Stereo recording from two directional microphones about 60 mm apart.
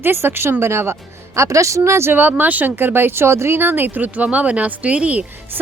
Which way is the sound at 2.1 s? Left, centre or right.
Right.